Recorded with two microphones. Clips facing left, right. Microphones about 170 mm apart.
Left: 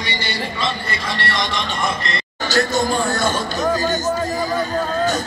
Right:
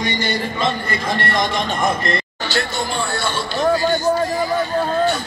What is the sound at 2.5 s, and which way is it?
Speech, 45° left (ahead or behind).